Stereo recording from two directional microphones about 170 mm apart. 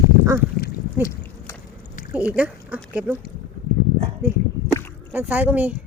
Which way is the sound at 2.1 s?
10° right (ahead or behind).